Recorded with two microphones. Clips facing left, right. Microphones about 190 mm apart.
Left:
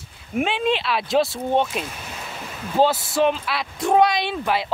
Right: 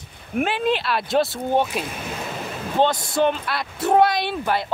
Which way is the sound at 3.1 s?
Centre (ahead or behind).